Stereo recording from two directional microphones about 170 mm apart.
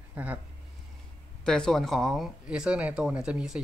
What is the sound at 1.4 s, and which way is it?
Speech, 5° left (ahead or behind).